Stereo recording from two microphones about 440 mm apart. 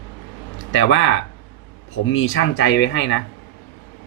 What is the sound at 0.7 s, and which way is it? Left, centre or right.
Speech, left.